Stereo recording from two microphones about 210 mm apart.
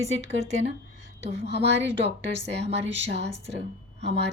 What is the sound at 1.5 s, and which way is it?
A woman's voice, 55° right (ahead or behind).